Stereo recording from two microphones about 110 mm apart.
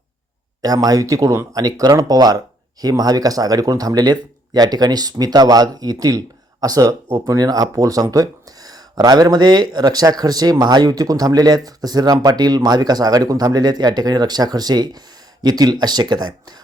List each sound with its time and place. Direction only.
0.6 s speech: 35° right (ahead or behind)